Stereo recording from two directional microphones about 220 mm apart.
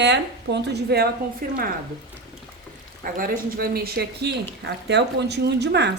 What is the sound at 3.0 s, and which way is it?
A woman's voice, 40° right (ahead or behind).